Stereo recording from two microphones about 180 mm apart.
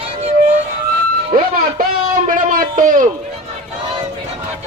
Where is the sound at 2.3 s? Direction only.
50° right (ahead or behind).